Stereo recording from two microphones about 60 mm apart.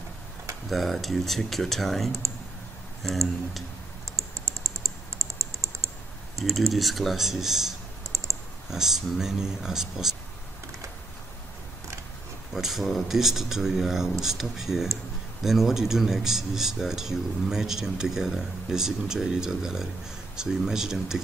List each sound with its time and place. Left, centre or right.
0.7 s speech: centre
4.2 s typing: right
6.3 s speech: centre
8.1 s clicking: right
8.6 s speech: centre
12.5 s speech: centre